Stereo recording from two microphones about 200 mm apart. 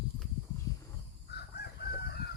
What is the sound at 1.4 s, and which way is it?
Chicken, 55° left (ahead or behind).